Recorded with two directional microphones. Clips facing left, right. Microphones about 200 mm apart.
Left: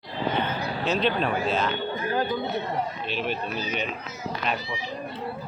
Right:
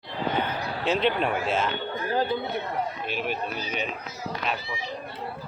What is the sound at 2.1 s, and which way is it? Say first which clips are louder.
Chatter: right 2 dB; 30° right (ahead or behind).